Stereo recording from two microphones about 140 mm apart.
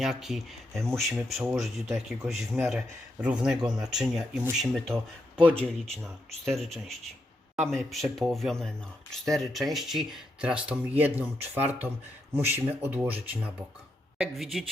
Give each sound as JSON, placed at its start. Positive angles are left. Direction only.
{"t": 0.0, "sound": "speech", "side_deg": -5}
{"t": 14.2, "sound": "speech", "side_deg": 0}